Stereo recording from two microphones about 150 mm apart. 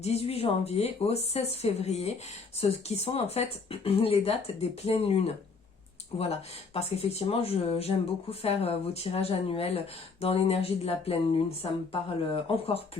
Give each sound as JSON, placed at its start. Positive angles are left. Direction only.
{"t": 0.0, "sound": "speech", "side_deg": 45}